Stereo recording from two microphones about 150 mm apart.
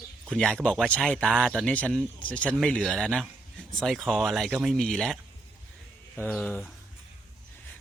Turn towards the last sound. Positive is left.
turn(degrees=0)  # may be behind; listen again after turning